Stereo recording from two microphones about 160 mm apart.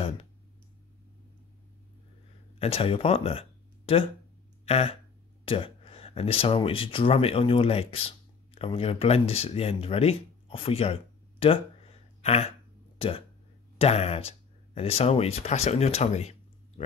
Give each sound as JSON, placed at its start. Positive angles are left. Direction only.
{"t": 2.6, "sound": "speech", "side_deg": 35}
{"t": 13.7, "sound": "speech", "side_deg": 40}